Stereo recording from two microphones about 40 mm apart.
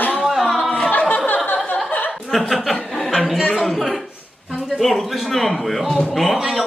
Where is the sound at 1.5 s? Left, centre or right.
Left.